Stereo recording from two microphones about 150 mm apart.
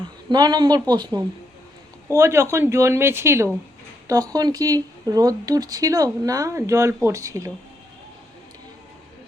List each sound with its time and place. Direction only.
0.3 s speech: 25° right (ahead or behind)